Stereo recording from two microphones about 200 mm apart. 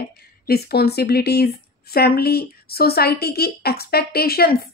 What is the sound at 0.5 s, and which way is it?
Speech, 50° left (ahead or behind).